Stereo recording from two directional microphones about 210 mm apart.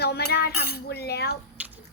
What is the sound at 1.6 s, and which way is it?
Squish, 10° right (ahead or behind).